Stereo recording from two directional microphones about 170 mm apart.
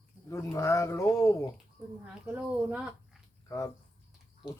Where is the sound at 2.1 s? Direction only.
10° right (ahead or behind).